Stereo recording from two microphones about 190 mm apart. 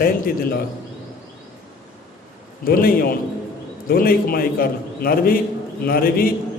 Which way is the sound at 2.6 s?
50° left (ahead or behind).